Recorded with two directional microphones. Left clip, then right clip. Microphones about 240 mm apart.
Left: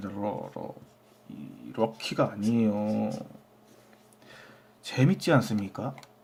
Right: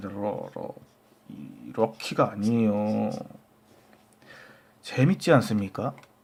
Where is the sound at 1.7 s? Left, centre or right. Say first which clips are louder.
Right 3 dB; centre.